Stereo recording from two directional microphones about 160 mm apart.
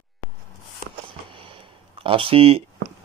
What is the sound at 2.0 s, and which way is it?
Speech, 35° right (ahead or behind).